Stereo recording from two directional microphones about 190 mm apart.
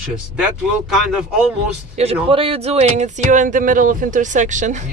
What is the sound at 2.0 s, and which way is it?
Speech, 35° right (ahead or behind).